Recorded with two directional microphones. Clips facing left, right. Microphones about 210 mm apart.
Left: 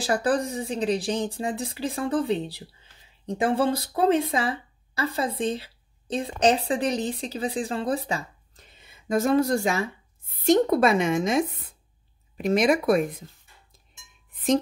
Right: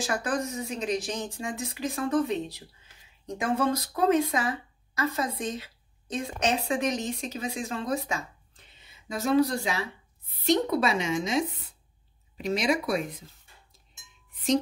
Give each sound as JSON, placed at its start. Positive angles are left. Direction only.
{"t": 0.0, "sound": "speech", "side_deg": 35}
{"t": 8.8, "sound": "a woman's voice", "side_deg": 50}
{"t": 14.3, "sound": "music", "side_deg": 50}